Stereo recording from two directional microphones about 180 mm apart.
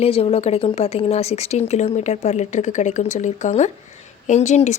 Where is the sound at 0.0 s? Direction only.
35° left (ahead or behind).